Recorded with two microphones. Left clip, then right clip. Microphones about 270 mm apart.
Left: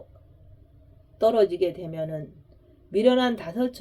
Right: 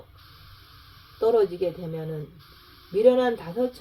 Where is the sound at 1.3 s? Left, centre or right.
Left.